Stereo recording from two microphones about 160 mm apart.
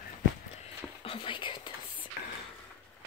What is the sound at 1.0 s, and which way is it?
Whispering, 35° left (ahead or behind).